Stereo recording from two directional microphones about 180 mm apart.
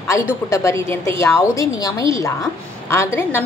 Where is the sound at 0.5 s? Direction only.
15° left (ahead or behind).